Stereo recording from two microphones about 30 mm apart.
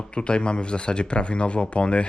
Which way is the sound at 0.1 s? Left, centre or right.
Left.